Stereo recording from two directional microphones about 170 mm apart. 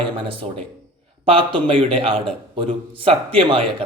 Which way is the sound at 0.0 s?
30° right (ahead or behind).